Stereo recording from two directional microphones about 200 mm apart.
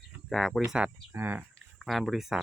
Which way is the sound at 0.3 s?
Centre (ahead or behind).